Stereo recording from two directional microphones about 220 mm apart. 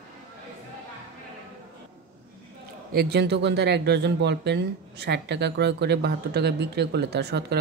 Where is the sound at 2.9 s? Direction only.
45° right (ahead or behind).